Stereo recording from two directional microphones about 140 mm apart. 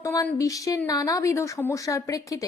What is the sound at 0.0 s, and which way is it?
Speech, 20° left (ahead or behind).